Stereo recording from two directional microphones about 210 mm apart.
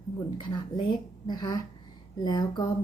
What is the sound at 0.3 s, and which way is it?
A woman's voice, 20° left (ahead or behind).